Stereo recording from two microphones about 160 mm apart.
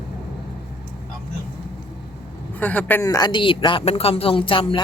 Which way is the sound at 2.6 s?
10° left (ahead or behind).